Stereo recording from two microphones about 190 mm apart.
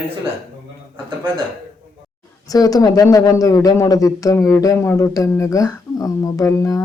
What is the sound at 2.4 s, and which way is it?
A man's voice, 20° left (ahead or behind).